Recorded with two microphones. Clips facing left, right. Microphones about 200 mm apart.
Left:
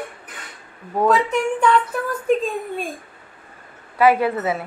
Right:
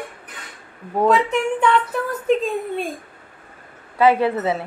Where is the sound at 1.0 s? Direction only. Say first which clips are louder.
Even; 20° right (ahead or behind).